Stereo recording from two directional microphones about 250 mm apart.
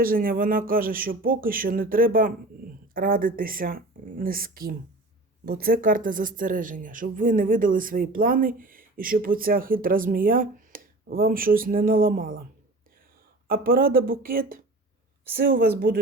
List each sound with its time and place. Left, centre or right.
0.0 s a woman's voice: right
13.5 s a woman's voice: right